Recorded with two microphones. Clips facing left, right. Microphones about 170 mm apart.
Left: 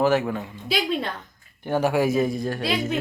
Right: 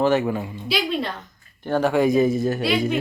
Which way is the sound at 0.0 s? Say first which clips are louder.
Right 1 dB; 5° left (ahead or behind).